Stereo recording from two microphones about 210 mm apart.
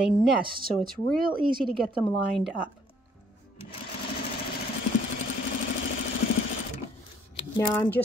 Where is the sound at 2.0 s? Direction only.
Centre (ahead or behind).